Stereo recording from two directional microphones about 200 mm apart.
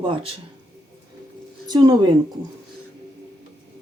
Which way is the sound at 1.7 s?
20° right (ahead or behind).